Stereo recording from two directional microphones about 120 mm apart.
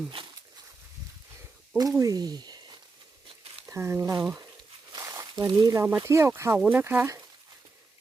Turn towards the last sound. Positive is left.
turn(degrees=-20)  # may be behind; listen again after turning